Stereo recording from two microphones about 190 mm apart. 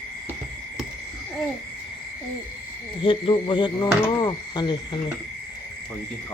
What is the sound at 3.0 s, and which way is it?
Speech, 25° left (ahead or behind).